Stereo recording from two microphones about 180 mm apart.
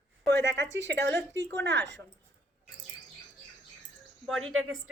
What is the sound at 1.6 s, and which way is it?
Speech, 75° right (ahead or behind).